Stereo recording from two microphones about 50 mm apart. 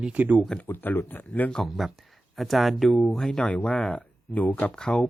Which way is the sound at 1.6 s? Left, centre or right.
Centre.